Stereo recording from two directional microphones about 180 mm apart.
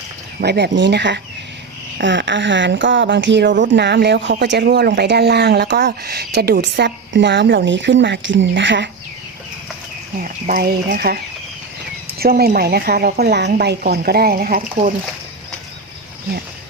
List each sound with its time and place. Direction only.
0.4 s speech: 70° right (ahead or behind)
2.0 s speech: 80° right
10.2 s a woman's voice: 50° right (ahead or behind)
12.2 s a woman's voice: 60° right (ahead or behind)